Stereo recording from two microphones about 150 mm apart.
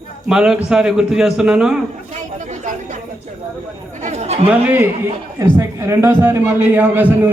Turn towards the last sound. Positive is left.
turn(degrees=-15)  # may be behind; listen again after turning